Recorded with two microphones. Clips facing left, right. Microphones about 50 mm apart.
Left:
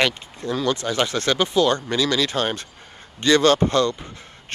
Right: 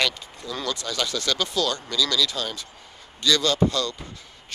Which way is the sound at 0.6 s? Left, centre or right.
Left.